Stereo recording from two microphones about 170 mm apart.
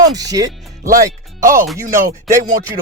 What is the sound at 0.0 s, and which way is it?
Speech, 20° right (ahead or behind).